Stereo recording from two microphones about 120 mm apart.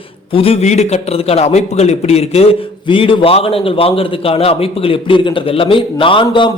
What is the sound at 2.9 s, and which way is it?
A man's voice, 45° left (ahead or behind).